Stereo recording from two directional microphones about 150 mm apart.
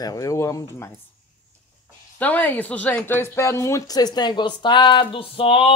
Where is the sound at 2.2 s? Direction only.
10° left (ahead or behind).